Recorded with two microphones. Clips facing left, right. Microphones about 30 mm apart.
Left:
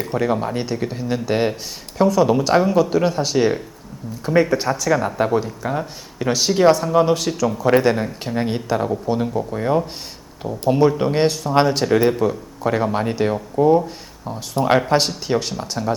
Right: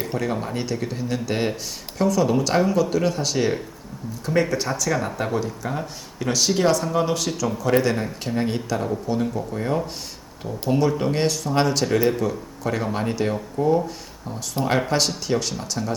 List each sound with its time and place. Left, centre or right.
0.2 s speech: centre
7.6 s speech: left
7.9 s speech: centre